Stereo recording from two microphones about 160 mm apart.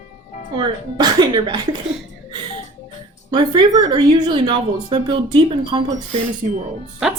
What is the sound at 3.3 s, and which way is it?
Speech, 30° right (ahead or behind).